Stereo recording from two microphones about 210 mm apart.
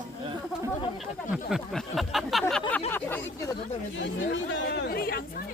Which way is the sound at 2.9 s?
10° left (ahead or behind).